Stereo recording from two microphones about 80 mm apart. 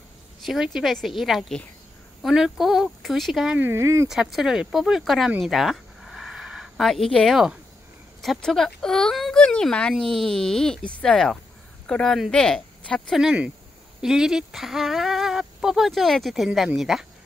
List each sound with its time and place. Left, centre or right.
0.5 s speech: centre
3.7 s speech: right
4.1 s speech: centre
5.4 s a sound: centre
8.2 s speech: centre
14.0 s speech: centre